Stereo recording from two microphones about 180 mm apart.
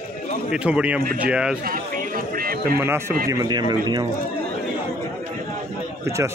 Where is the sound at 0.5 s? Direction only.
5° right (ahead or behind).